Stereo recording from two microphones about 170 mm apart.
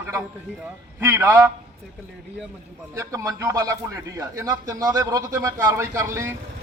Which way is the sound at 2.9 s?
15° right (ahead or behind).